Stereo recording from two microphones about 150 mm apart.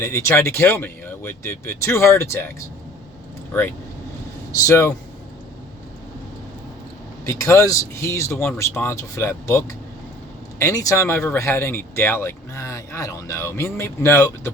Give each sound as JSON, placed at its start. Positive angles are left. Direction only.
{"t": 0.0, "sound": "speech", "side_deg": 15}
{"t": 4.6, "sound": "speech", "side_deg": 20}
{"t": 7.3, "sound": "speech", "side_deg": 20}